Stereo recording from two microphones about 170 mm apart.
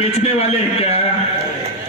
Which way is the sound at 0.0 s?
35° left (ahead or behind).